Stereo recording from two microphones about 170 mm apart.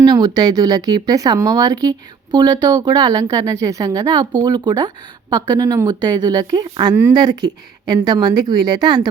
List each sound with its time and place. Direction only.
0.0 s speech: 20° right (ahead or behind)